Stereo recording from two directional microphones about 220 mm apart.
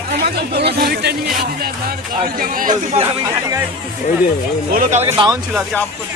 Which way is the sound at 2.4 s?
40° right (ahead or behind).